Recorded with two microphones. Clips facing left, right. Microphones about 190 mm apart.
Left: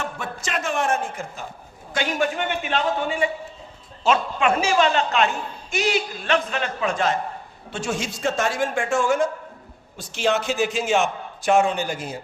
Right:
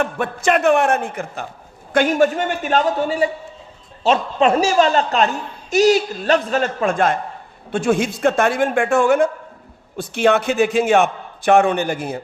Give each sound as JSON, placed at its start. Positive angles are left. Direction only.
{"t": 0.0, "sound": "a man's voice", "side_deg": -60}
{"t": 1.9, "sound": "a man's voice", "side_deg": -50}